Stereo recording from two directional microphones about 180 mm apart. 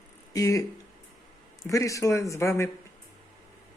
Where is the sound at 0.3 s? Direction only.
20° left (ahead or behind).